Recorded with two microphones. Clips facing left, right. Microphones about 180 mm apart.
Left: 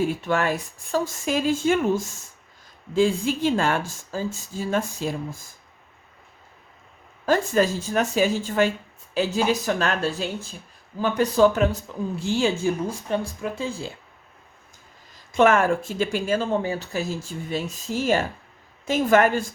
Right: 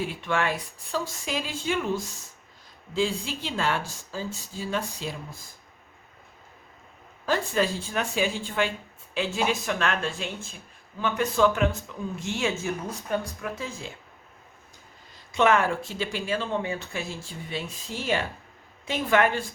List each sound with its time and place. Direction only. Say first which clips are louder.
0.0 s speech: left 5 dB; 45° left (ahead or behind)
2.9 s speech: left 7 dB; 50° left (ahead or behind)
7.3 s speech: left 5 dB; 45° left (ahead or behind)
15.3 s speech: left 4 dB; 50° left (ahead or behind)